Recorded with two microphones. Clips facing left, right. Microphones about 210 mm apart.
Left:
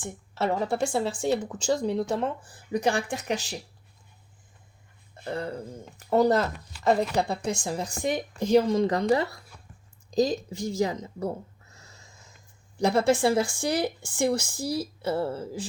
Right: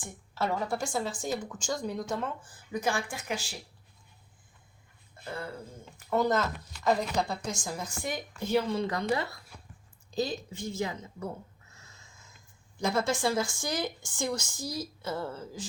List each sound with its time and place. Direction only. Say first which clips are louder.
0.3 s speech: left 5 dB; 30° left (ahead or behind)
5.2 s speech: left 7 dB; 40° left (ahead or behind)
11.7 s a sound: left 4 dB; 35° left (ahead or behind)
12.8 s speech: left 7 dB; 35° left (ahead or behind)